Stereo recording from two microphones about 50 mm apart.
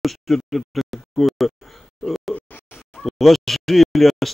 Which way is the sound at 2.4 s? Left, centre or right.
Left.